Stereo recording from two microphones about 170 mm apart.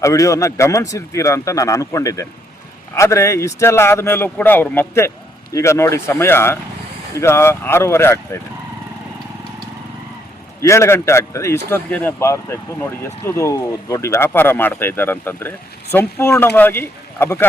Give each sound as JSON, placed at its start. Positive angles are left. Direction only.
{"t": 0.0, "sound": "a man's voice", "side_deg": 20}
{"t": 10.6, "sound": "a man's voice", "side_deg": 15}